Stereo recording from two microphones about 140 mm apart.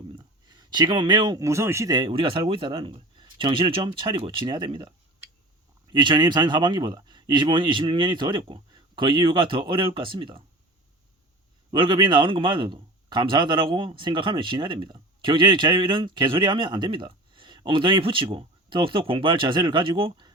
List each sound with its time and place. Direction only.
0.2 s a sound: 30° right (ahead or behind)
1.4 s a man's voice: 20° right (ahead or behind); by 10.4 s 35° right (ahead or behind)
11.7 s a man's voice: 35° right (ahead or behind)